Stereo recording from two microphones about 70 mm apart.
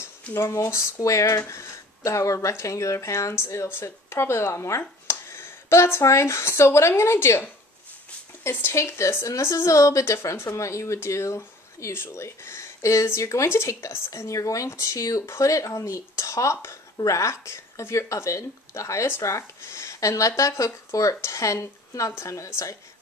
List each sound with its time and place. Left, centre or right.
0.0 s speech: left
8.5 s speech: left